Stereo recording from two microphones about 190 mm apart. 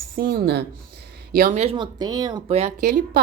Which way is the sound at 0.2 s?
50° right (ahead or behind).